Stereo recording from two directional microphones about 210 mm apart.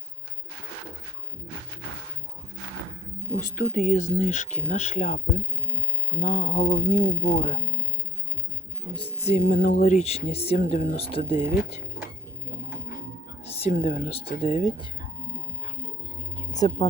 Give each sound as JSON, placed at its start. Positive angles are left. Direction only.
{"t": 3.3, "sound": "speech", "side_deg": 40}
{"t": 9.0, "sound": "speech", "side_deg": 30}
{"t": 11.4, "sound": "speech", "side_deg": 40}
{"t": 13.4, "sound": "music", "side_deg": 30}
{"t": 13.8, "sound": "speech", "side_deg": 40}
{"t": 15.6, "sound": "music", "side_deg": 30}
{"t": 16.6, "sound": "speech", "side_deg": 30}